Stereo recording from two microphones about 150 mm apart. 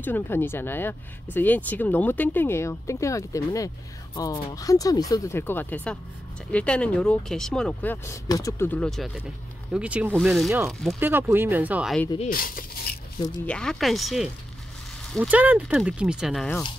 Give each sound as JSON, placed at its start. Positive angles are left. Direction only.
{"t": 0.0, "sound": "speech", "side_deg": 15}
{"t": 11.0, "sound": "speech", "side_deg": -15}
{"t": 12.3, "sound": "speech", "side_deg": 70}
{"t": 13.5, "sound": "speech", "side_deg": 5}